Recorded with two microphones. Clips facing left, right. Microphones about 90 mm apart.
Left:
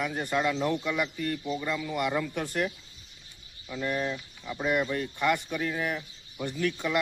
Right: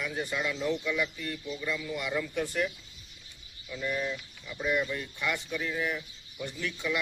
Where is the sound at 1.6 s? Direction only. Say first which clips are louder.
Left 2 dB; 40° left (ahead or behind).